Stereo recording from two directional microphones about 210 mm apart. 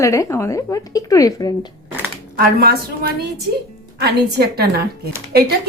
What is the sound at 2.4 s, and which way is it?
Speech, 50° right (ahead or behind).